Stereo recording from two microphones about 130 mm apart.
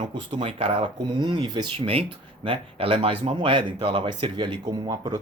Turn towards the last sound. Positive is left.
turn(degrees=-35)  # may be behind; listen again after turning